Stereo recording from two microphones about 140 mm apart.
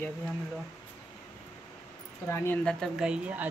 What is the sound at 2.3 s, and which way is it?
Speech, 20° left (ahead or behind).